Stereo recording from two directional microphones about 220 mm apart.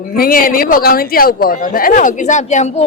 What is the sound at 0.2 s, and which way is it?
A man's voice, 40° left (ahead or behind).